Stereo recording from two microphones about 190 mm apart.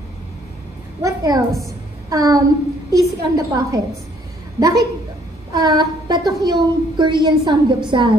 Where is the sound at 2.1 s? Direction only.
20° right (ahead or behind).